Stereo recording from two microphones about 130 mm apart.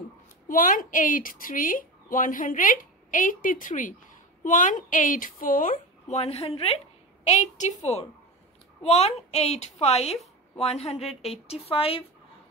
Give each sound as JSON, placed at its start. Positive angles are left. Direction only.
{"t": 0.5, "sound": "a woman's voice", "side_deg": 90}
{"t": 7.2, "sound": "a woman's voice", "side_deg": 65}